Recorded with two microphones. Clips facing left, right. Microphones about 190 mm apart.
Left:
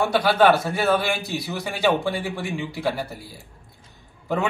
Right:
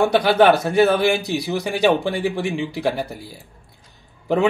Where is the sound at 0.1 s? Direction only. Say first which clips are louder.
Right 3 dB; 15° right (ahead or behind).